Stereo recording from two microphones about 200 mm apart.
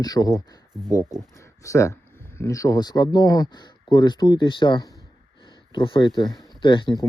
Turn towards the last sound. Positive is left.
turn(degrees=20)  # may be behind; listen again after turning